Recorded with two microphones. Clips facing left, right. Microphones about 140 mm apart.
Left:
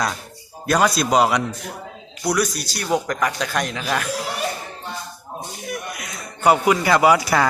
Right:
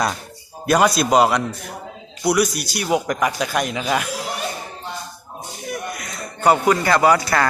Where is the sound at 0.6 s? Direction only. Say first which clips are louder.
Right 2 dB; 5° right (ahead or behind).